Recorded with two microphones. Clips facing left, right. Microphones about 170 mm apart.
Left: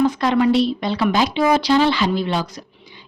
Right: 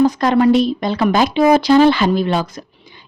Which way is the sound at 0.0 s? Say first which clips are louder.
Right 4 dB; 40° right (ahead or behind).